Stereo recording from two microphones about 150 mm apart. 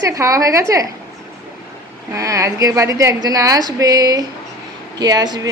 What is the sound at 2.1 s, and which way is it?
A woman's voice, 20° right (ahead or behind).